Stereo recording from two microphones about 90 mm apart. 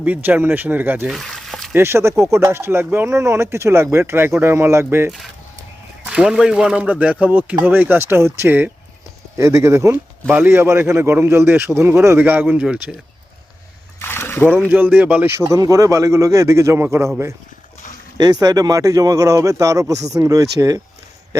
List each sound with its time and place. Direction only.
0.0 s speech: 20° right (ahead or behind)
1.0 s a sound: centre (ahead or behind)
1.7 s speech: 30° right (ahead or behind)
6.1 s speech: 5° right (ahead or behind)
9.4 s speech: 35° right (ahead or behind)
10.2 s speech: 20° right (ahead or behind)
14.0 s a sound: 25° left (ahead or behind)
14.7 s speech: 20° right (ahead or behind)
18.2 s speech: 45° right (ahead or behind)